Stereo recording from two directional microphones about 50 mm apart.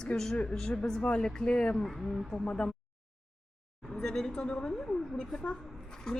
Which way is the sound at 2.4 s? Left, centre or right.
Centre.